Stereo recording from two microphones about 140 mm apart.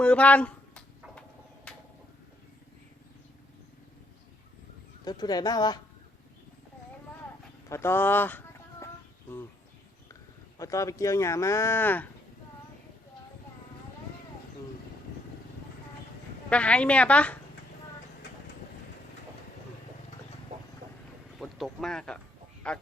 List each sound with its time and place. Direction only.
0.0 s a sound: 10° left (ahead or behind)
1.7 s bird: 5° left (ahead or behind)
5.0 s speech: 30° left (ahead or behind)
7.7 s speech: 15° left (ahead or behind)
10.6 s speech: 25° left (ahead or behind)
16.5 s a woman's voice: 10° left (ahead or behind)
21.3 s a woman's voice: centre (ahead or behind)